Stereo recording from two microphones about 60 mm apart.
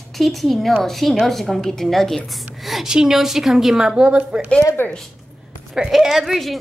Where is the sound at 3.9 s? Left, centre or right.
Centre.